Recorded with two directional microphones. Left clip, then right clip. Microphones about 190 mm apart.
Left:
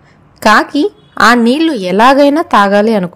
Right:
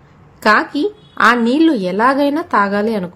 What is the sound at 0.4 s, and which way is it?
A woman's voice, 40° left (ahead or behind).